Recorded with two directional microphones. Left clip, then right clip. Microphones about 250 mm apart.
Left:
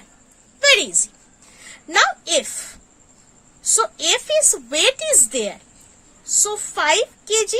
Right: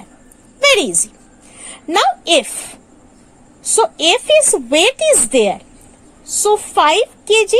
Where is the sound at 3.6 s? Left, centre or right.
Centre.